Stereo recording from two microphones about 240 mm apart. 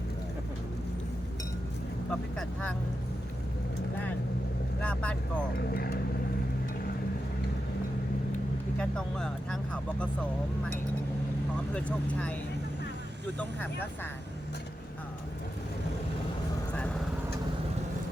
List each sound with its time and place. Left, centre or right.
2.0 s speech: centre
4.8 s speech: centre
5.7 s speech: left
8.8 s speech: centre
11.7 s speech: centre
13.4 s speech: centre